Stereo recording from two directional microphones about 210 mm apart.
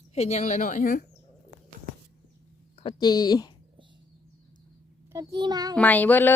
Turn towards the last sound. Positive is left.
turn(degrees=10)  # may be behind; listen again after turning